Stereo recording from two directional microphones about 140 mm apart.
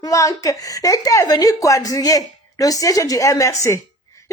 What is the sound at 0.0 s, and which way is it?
Speech, 20° left (ahead or behind).